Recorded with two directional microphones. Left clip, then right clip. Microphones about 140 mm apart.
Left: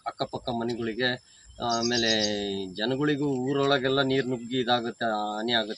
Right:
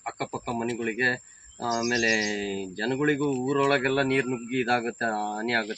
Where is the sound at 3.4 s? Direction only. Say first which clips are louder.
Right 1 dB; 20° left (ahead or behind).